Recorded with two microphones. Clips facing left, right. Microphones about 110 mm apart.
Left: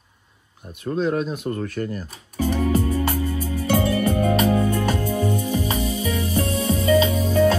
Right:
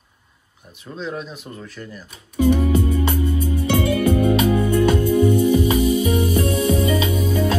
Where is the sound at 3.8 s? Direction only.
40° left (ahead or behind).